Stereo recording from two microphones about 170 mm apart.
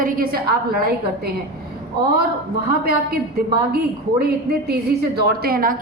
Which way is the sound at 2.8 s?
65° right (ahead or behind).